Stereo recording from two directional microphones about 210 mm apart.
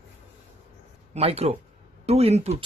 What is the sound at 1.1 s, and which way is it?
Speech, 30° right (ahead or behind).